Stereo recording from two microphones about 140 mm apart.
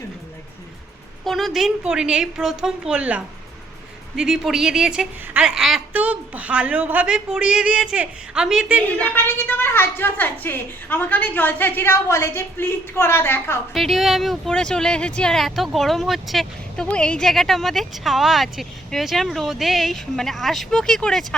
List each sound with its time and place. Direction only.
1.2 s a woman's voice: centre (ahead or behind)
9.1 s a woman's voice: 15° left (ahead or behind)
13.7 s speech: centre (ahead or behind)